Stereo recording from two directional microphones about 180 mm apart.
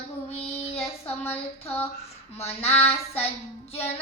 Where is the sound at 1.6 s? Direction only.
10° left (ahead or behind).